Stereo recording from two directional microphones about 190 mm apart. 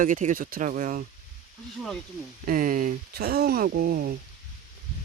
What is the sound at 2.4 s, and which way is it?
Speech, 45° right (ahead or behind).